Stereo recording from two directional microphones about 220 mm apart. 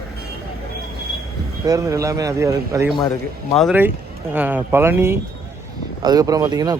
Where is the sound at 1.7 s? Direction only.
15° right (ahead or behind).